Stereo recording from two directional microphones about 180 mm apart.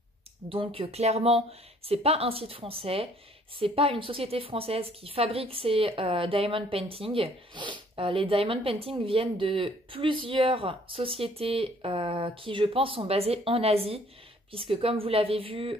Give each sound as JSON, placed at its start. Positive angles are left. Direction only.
{"t": 0.5, "sound": "a woman's voice", "side_deg": -30}